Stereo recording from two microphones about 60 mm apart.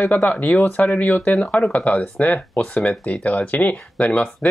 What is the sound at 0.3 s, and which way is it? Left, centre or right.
Speech, left.